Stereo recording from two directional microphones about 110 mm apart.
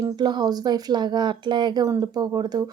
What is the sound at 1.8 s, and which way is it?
Speech, 30° right (ahead or behind).